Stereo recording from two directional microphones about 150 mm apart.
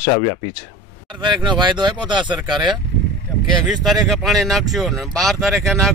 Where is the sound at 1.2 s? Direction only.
30° right (ahead or behind).